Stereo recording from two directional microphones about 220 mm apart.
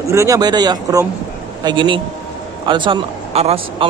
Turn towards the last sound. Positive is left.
turn(degrees=-25)  # may be behind; listen again after turning